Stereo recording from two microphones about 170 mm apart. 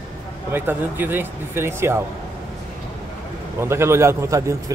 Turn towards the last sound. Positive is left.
turn(degrees=-15)  # may be behind; listen again after turning